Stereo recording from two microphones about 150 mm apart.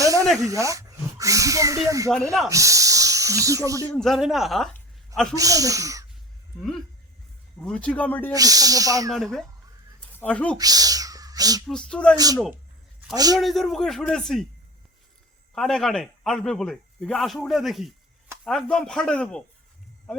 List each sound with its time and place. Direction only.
0.0 s snake: 20° right (ahead or behind)
0.3 s speech: 20° right (ahead or behind)
3.9 s a man's voice: centre (ahead or behind)
4.7 s a sound: 5° left (ahead or behind)
5.4 s speech: 25° right (ahead or behind)
7.6 s speech: 5° left (ahead or behind)
8.3 s speech: 25° right (ahead or behind)
9.0 s a man's voice: centre (ahead or behind)
10.6 s a sound: 25° right (ahead or behind)
11.6 s speech: 5° left (ahead or behind)
12.1 s speech: 25° right (ahead or behind)
13.4 s a man's voice: centre (ahead or behind)
15.5 s a man's voice: centre (ahead or behind)